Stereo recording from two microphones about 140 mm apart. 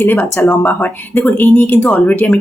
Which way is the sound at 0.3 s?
15° left (ahead or behind).